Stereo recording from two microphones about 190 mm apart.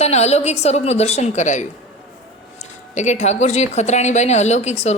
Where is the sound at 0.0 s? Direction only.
35° left (ahead or behind).